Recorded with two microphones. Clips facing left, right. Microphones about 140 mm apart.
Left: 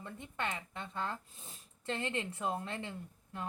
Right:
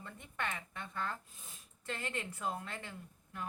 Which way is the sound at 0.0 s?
20° left (ahead or behind).